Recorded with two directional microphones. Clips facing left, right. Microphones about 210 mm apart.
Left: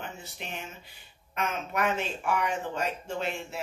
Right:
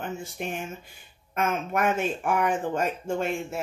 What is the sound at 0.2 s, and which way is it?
Speech, 50° right (ahead or behind).